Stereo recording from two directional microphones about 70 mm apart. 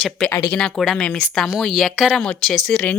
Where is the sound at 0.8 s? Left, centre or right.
Centre.